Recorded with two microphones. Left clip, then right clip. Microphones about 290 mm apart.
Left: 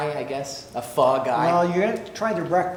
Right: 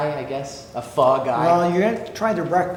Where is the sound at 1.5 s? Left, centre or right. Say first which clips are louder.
Right 5 dB; left.